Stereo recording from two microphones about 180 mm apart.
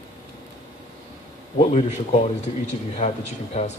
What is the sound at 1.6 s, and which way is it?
Speech, 40° left (ahead or behind).